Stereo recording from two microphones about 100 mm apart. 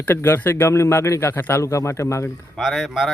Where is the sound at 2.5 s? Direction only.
Centre (ahead or behind).